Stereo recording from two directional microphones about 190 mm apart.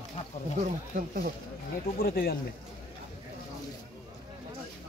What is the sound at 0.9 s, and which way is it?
Speech, 50° right (ahead or behind).